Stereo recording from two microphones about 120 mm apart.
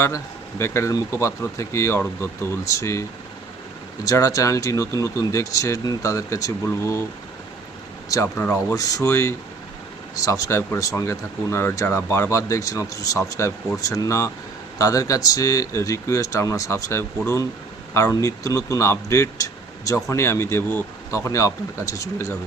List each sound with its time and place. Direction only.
0.6 s speech: 25° left (ahead or behind)
8.1 s speech: 25° left (ahead or behind)